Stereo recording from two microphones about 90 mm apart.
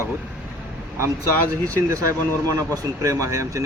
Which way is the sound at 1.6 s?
35° right (ahead or behind).